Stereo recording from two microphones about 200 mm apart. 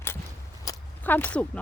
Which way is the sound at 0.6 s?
10° left (ahead or behind).